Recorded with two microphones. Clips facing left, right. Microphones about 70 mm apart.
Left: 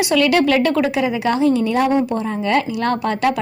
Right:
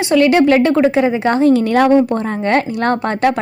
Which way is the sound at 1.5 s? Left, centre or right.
Right.